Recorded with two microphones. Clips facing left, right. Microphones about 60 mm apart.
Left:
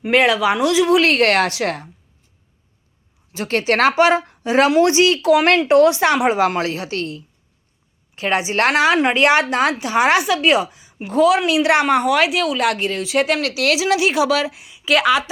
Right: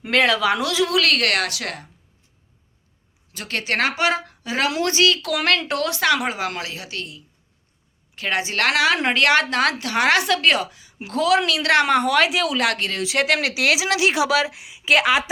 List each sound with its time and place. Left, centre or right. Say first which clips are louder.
0.1 s speech: left 3 dB; centre; by 1.9 s left
3.3 s a woman's voice: left 6 dB; left
8.1 s speech: left 4 dB; left
10.7 s a sound: left 1 dB; left
10.9 s a woman's voice: left 4 dB; centre
13.4 s speech: left 2 dB; centre